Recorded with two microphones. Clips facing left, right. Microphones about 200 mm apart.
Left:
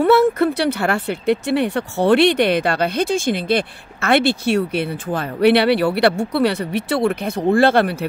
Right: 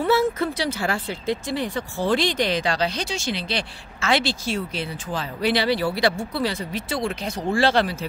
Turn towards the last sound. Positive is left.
turn(degrees=55)  # may be behind; listen again after turning